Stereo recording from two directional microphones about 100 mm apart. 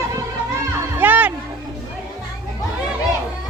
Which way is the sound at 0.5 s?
20° right (ahead or behind).